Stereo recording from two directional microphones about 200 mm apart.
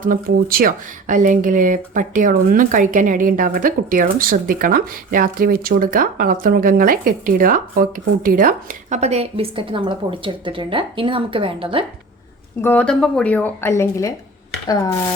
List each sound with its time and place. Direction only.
0.0 s speech: 45° right (ahead or behind); by 11.9 s 25° right (ahead or behind)
12.6 s speech: 5° left (ahead or behind)